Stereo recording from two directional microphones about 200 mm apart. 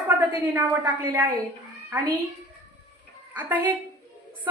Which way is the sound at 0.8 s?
20° right (ahead or behind).